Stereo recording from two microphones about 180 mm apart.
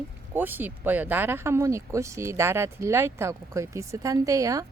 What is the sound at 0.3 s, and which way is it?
Speech, 10° right (ahead or behind).